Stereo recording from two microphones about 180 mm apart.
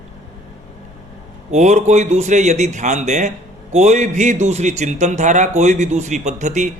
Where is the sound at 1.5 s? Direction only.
40° right (ahead or behind).